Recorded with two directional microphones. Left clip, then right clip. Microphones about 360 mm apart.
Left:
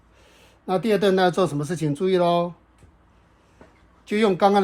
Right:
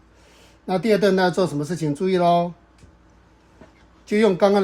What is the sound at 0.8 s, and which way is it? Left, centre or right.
Speech, centre.